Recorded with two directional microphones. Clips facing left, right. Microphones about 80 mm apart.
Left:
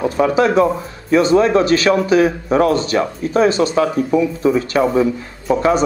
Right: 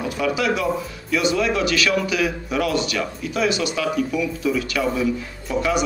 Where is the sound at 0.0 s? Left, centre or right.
Left.